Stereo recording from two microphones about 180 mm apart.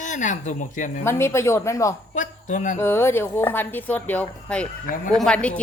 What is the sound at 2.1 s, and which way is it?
Speech, 45° left (ahead or behind).